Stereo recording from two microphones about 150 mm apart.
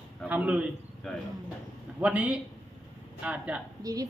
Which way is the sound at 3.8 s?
25° right (ahead or behind).